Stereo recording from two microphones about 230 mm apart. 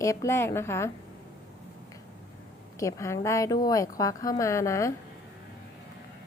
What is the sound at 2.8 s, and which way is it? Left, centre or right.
A woman's voice, centre.